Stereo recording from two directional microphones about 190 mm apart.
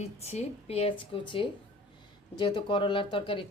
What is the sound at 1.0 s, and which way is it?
Speech, 25° left (ahead or behind).